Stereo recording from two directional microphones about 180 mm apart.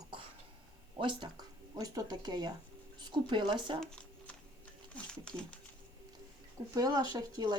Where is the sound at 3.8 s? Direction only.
5° left (ahead or behind).